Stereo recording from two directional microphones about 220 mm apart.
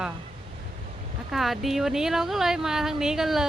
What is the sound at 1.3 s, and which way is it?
Speech, centre (ahead or behind).